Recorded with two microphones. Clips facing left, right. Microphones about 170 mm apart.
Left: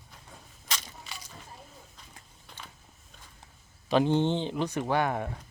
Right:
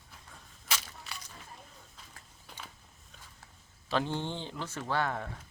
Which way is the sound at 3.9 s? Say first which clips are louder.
Left 8 dB; 15° left (ahead or behind).